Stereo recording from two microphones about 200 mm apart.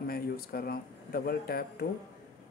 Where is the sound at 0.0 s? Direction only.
50° left (ahead or behind).